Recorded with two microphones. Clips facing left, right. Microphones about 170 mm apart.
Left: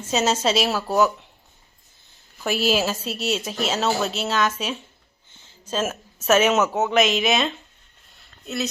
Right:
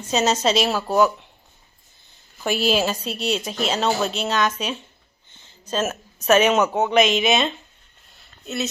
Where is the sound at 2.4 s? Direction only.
Centre (ahead or behind).